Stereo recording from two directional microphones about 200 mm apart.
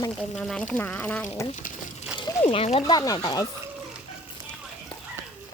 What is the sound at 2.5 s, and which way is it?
Speech, 30° left (ahead or behind).